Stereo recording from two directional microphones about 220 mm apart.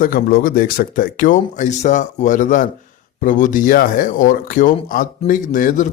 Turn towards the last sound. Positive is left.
turn(degrees=35)  # may be behind; listen again after turning